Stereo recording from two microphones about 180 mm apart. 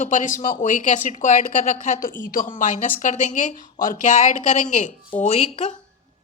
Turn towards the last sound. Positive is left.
turn(degrees=35)  # may be behind; listen again after turning